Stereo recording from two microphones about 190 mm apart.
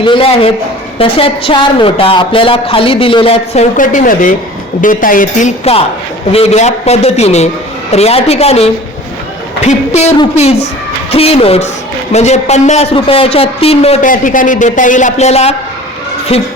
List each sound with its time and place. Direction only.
0.0 s a woman's voice: 25° left (ahead or behind)
14.1 s a man's voice: 45° left (ahead or behind)